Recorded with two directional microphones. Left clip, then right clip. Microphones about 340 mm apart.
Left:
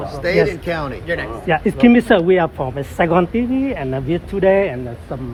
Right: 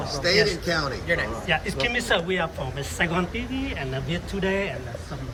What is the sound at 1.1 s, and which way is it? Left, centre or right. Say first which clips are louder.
Speech: left 7 dB; centre.